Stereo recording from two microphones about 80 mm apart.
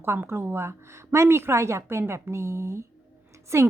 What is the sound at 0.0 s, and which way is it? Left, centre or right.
Speech, right.